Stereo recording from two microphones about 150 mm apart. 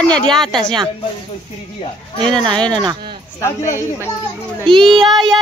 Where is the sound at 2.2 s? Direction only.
5° left (ahead or behind).